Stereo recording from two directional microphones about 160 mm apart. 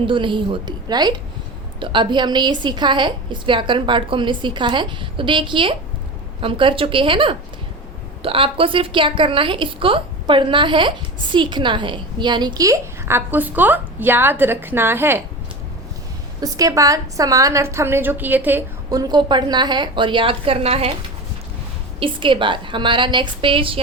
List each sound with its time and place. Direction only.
0.0 s a woman's voice: 30° right (ahead or behind); by 15.2 s 15° right (ahead or behind)
16.4 s a woman's voice: 20° right (ahead or behind)
18.9 s a woman's voice: 25° right (ahead or behind)
22.0 s a woman's voice: 30° right (ahead or behind)